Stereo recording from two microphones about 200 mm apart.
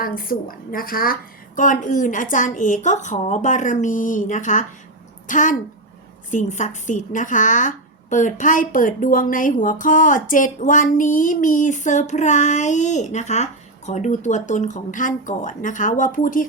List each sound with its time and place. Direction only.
0.2 s a woman's voice: 45° left (ahead or behind)